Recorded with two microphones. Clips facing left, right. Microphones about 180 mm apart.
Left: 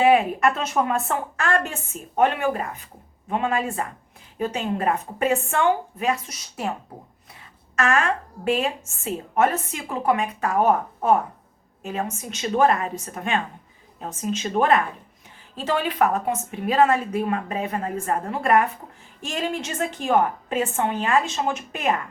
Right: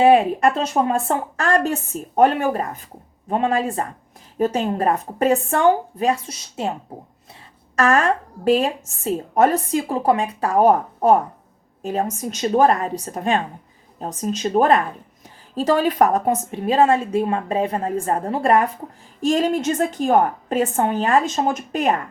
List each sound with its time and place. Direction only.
0.0 s a woman's voice: 30° right (ahead or behind)
7.8 s a woman's voice: 40° right (ahead or behind)